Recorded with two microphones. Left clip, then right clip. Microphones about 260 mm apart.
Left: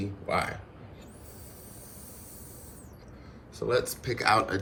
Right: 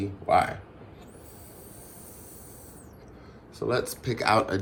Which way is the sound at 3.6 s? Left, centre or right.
Centre.